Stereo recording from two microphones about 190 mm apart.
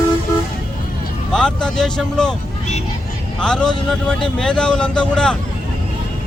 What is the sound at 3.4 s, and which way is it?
Speech, 5° left (ahead or behind).